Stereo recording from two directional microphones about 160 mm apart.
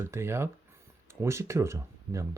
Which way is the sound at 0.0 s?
15° right (ahead or behind).